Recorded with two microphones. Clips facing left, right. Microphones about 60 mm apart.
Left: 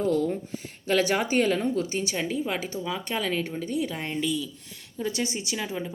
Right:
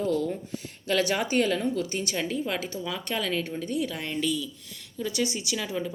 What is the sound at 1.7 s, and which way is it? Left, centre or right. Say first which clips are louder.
Speech: left 1 dB; centre.